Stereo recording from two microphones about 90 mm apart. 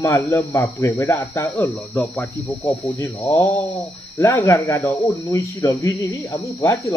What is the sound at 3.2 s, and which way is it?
Speech, 35° left (ahead or behind).